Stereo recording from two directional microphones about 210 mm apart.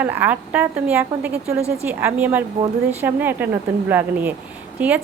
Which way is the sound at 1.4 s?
30° right (ahead or behind).